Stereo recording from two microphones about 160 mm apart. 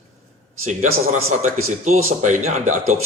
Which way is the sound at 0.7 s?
50° right (ahead or behind).